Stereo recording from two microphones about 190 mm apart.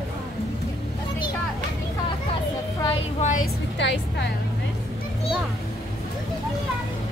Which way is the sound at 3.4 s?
65° left (ahead or behind).